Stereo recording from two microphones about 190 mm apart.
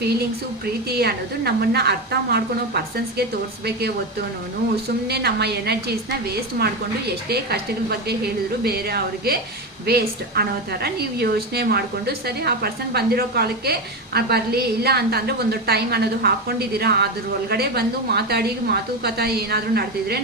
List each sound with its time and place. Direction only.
0.9 s a woman's voice: 55° right (ahead or behind)
5.0 s a woman's voice: 60° right (ahead or behind)